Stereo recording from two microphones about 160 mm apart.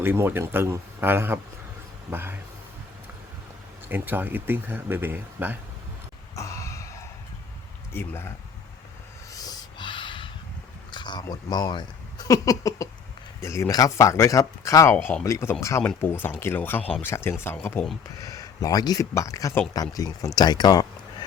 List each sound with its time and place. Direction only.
0.0 s speech: 15° right (ahead or behind)
3.8 s speech: 10° right (ahead or behind)
6.3 s a sound: 20° left (ahead or behind)
7.9 s speech: 15° left (ahead or behind)
9.3 s snort: 25° left (ahead or behind)
10.9 s speech: 30° left (ahead or behind)